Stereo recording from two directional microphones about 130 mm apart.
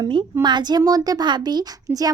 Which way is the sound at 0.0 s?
40° right (ahead or behind).